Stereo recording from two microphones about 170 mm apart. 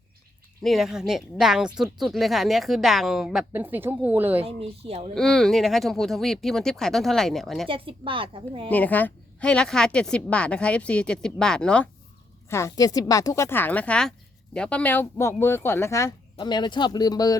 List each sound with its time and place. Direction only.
0.6 s speech: centre (ahead or behind)
4.4 s a woman's voice: 35° right (ahead or behind)
5.1 s speech: centre (ahead or behind)
7.7 s a woman's voice: 30° right (ahead or behind)
8.7 s a woman's voice: 10° left (ahead or behind)
12.5 s a woman's voice: 15° left (ahead or behind)